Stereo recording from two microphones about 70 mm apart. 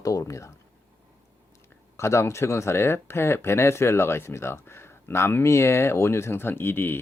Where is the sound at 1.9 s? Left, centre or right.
Left.